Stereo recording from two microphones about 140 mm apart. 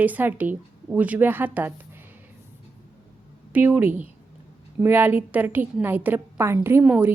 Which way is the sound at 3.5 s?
15° right (ahead or behind).